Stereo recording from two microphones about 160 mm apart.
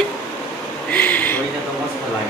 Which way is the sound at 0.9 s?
10° left (ahead or behind).